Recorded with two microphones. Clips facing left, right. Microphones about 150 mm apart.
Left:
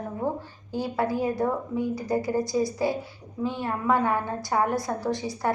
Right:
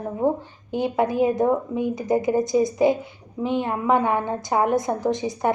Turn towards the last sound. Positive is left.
turn(degrees=-20)  # may be behind; listen again after turning